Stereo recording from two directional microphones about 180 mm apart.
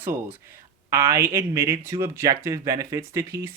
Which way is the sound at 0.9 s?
15° right (ahead or behind).